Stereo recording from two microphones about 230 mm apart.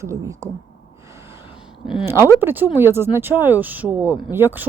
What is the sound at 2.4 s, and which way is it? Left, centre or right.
A woman's voice, centre.